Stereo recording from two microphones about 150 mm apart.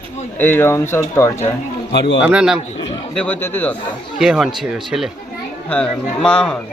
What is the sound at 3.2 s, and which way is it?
Speech, 10° left (ahead or behind).